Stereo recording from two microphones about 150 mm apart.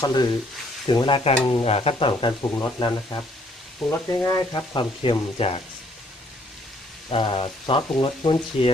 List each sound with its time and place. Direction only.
0.0 s speech: 25° left (ahead or behind)
7.1 s speech: 35° left (ahead or behind)